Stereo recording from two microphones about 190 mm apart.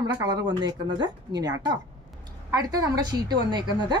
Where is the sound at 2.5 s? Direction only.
20° right (ahead or behind).